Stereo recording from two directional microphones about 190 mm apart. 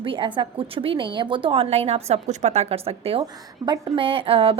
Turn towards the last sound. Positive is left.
turn(degrees=-30)  # may be behind; listen again after turning